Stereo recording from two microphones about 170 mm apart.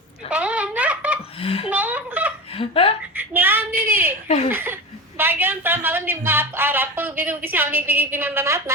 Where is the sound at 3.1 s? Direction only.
10° right (ahead or behind).